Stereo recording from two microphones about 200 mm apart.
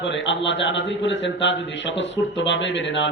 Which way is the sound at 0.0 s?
65° left (ahead or behind).